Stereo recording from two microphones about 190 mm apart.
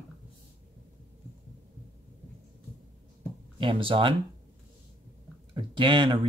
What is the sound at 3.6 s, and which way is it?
Speech, 25° right (ahead or behind).